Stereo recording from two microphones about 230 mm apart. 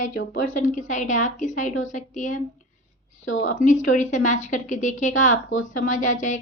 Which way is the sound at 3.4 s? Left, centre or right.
Left.